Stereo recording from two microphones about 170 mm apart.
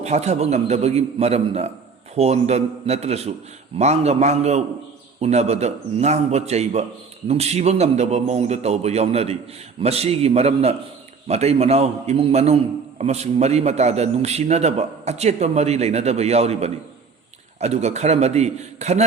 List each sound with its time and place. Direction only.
0.0 s a man's voice: 40° right (ahead or behind)